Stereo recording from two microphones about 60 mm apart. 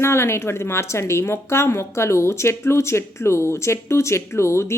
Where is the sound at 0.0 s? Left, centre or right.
Left.